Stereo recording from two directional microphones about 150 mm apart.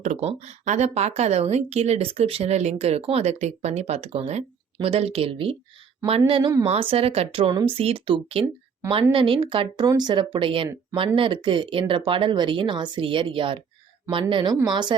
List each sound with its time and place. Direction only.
0.0 s speech: 45° right (ahead or behind); by 14.9 s 30° right (ahead or behind)